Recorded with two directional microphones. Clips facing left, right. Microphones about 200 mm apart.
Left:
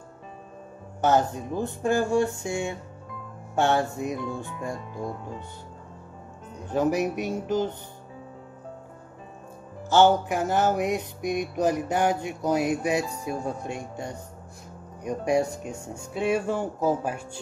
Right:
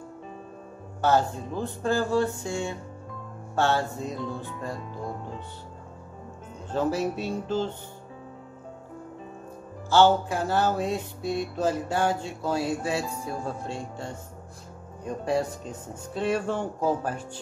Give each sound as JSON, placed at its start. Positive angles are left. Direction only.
{"t": 1.0, "sound": "music", "side_deg": 20}
{"t": 6.7, "sound": "music", "side_deg": 15}
{"t": 9.8, "sound": "music", "side_deg": 15}